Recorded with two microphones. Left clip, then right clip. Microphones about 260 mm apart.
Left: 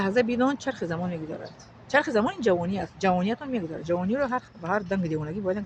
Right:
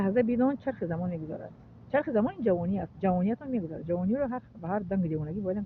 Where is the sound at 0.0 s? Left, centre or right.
Centre.